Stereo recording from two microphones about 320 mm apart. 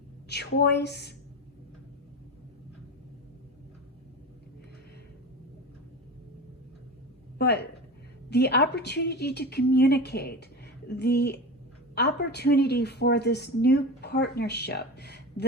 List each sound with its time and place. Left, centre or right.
0.3 s a woman's voice: left
7.3 s a woman's voice: left